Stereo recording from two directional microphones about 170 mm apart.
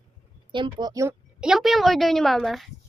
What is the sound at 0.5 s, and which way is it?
Speech, 25° right (ahead or behind).